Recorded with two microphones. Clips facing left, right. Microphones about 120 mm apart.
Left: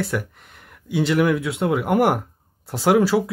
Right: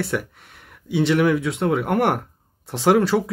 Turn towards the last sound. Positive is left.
turn(degrees=5)  # may be behind; listen again after turning